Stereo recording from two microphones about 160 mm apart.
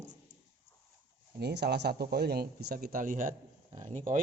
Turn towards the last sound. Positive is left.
turn(degrees=-55)  # may be behind; listen again after turning